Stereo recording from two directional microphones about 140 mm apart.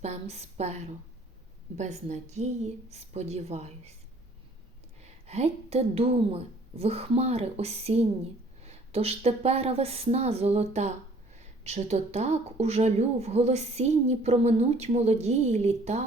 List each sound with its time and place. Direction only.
0.0 s a woman's voice: 50° right (ahead or behind)
5.0 s a woman's voice: 50° right (ahead or behind)